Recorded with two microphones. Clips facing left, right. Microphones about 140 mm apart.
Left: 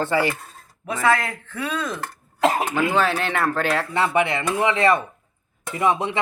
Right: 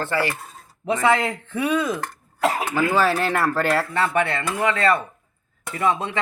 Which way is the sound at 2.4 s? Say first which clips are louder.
Left 2 dB; 25° left (ahead or behind).